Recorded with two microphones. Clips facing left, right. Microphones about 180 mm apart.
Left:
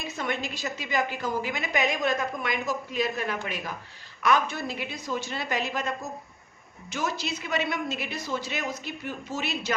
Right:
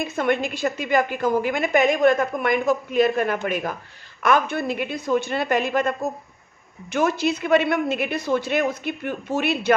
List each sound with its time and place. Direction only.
0.0 s a woman's voice: 55° right (ahead or behind)
6.9 s a woman's voice: 55° right (ahead or behind)